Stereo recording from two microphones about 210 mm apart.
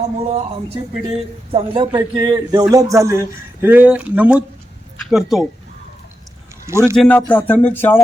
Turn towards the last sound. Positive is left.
turn(degrees=10)  # may be behind; listen again after turning